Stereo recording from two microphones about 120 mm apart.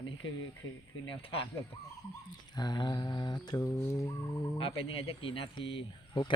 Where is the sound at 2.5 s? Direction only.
35° left (ahead or behind).